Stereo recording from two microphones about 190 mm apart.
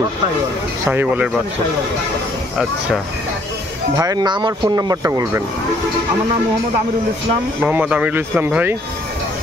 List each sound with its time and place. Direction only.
0.8 s speech: 10° right (ahead or behind)
3.9 s speech: 20° right (ahead or behind)
7.6 s speech: 10° right (ahead or behind)